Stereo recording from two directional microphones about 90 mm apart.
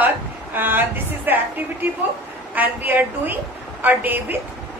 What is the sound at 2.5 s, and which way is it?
A woman's voice, 20° right (ahead or behind).